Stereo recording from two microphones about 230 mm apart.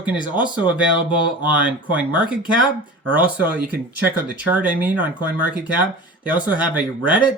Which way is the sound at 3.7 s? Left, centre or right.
Centre.